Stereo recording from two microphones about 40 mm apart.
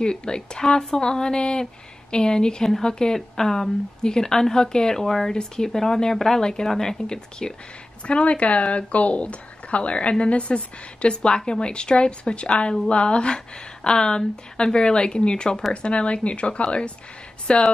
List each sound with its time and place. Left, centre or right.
0.0 s speech: left
6.4 s speech: centre
8.0 s speech: left